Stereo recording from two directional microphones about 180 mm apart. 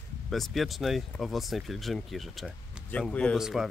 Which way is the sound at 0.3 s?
Centre (ahead or behind).